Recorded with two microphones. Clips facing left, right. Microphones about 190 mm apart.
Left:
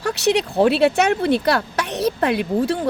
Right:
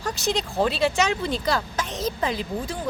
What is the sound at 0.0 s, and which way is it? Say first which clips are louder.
Speech: left 7 dB; 70° left (ahead or behind).